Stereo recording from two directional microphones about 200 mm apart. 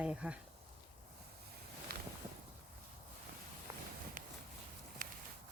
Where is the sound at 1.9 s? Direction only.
50° right (ahead or behind).